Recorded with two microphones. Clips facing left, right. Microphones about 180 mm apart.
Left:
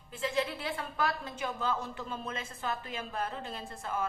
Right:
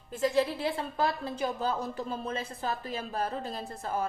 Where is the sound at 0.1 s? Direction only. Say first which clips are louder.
Right 6 dB; 40° right (ahead or behind).